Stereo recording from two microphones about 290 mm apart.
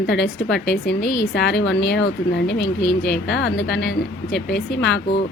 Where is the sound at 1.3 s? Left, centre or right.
Left.